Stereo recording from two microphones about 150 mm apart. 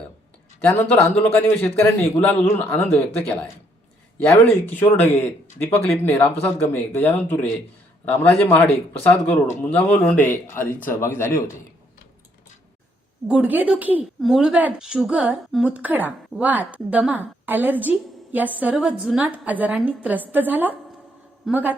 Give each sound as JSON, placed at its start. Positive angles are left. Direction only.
{"t": 0.6, "sound": "a man's voice", "side_deg": 15}
{"t": 4.6, "sound": "a man's voice", "side_deg": 15}
{"t": 13.2, "sound": "a woman's voice", "side_deg": -10}